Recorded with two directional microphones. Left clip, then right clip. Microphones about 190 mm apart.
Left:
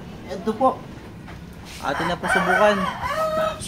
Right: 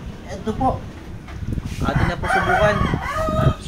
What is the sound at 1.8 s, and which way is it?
Speech, 30° left (ahead or behind).